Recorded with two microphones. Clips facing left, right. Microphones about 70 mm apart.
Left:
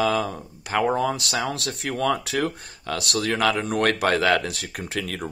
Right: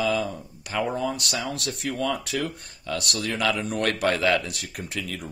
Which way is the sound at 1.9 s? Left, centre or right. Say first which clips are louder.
Left 4 dB; left.